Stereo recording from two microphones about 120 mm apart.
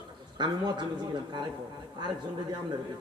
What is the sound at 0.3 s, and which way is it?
A man's voice, 40° right (ahead or behind).